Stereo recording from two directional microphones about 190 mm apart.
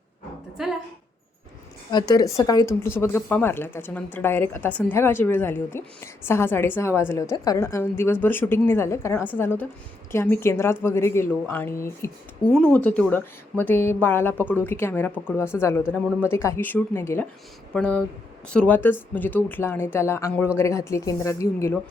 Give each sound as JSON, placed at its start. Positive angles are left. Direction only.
{"t": 1.9, "sound": "speech", "side_deg": 20}